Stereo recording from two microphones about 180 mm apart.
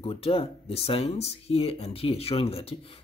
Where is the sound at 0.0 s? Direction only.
30° left (ahead or behind).